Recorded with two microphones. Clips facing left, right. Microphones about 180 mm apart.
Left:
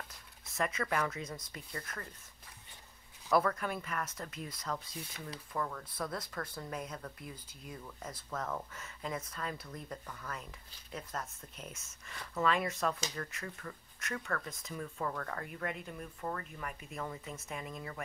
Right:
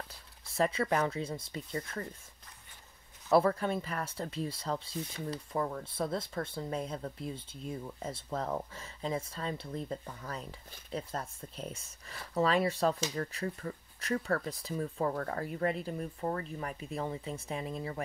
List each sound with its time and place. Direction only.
0.1 s speech: 30° right (ahead or behind)
3.3 s speech: 30° right (ahead or behind)